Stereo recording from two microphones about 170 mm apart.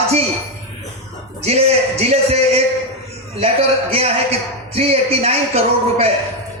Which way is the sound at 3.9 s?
35° right (ahead or behind).